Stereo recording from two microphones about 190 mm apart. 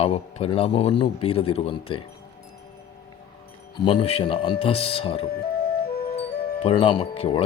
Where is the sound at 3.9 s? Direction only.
30° left (ahead or behind).